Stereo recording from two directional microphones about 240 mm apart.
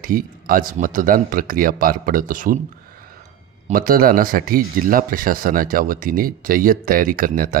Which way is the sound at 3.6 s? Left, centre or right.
Right.